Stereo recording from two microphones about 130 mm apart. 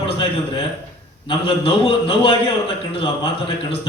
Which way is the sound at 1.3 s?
45° left (ahead or behind).